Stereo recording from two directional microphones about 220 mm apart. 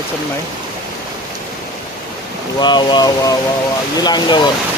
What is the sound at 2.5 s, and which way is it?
Speech, 20° left (ahead or behind).